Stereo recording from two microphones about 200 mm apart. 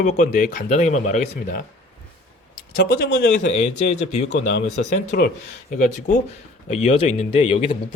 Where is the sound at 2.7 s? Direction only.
65° left (ahead or behind).